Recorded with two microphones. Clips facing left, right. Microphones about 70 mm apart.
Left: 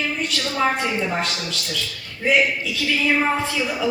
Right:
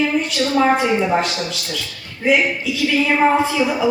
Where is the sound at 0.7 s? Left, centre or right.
Centre.